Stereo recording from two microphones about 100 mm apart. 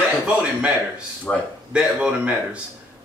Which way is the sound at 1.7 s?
10° right (ahead or behind).